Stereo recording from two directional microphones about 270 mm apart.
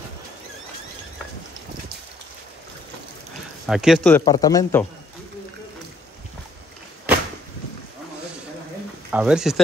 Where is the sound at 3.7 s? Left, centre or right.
Centre.